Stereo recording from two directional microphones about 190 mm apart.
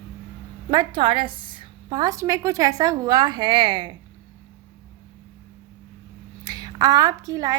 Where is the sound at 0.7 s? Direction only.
20° right (ahead or behind).